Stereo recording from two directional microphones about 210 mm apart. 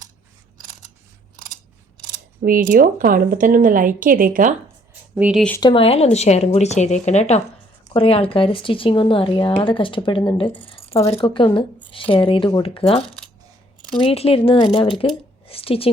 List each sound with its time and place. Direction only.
2.4 s speech: 40° right (ahead or behind)
5.1 s speech: 5° right (ahead or behind)
5.5 s a woman's voice: 25° left (ahead or behind)